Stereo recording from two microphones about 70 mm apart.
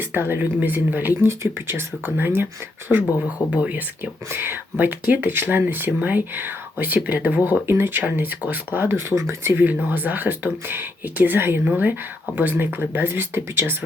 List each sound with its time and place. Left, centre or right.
0.0 s speech: right
1.3 s speech: right
9.8 s speech: right